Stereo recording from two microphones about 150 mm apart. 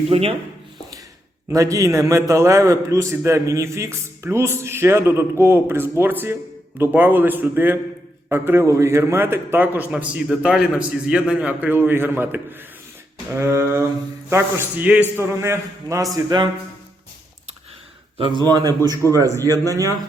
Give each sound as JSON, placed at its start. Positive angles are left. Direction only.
{"t": 0.1, "sound": "a man's voice", "side_deg": -40}
{"t": 1.5, "sound": "a man's voice", "side_deg": -20}
{"t": 16.1, "sound": "a man's voice", "side_deg": -30}
{"t": 18.2, "sound": "a man's voice", "side_deg": -30}